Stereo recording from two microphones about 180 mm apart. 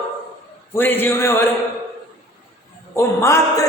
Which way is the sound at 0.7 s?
10° left (ahead or behind).